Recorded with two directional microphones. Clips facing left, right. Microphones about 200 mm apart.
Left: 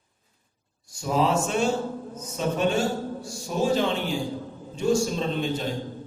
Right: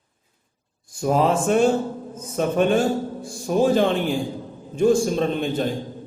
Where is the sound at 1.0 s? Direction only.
50° right (ahead or behind).